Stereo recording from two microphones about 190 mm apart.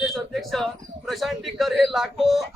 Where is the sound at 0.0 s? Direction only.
Centre (ahead or behind).